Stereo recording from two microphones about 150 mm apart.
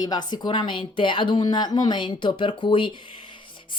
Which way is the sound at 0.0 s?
25° left (ahead or behind).